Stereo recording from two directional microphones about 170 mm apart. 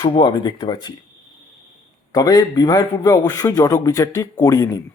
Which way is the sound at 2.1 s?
20° left (ahead or behind).